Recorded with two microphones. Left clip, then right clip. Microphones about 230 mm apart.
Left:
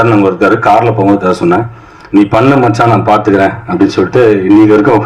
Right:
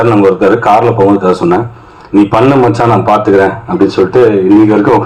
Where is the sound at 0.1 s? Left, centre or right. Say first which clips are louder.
Right 1 dB; left.